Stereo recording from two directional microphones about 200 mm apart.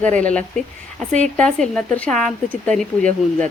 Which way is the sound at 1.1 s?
35° right (ahead or behind).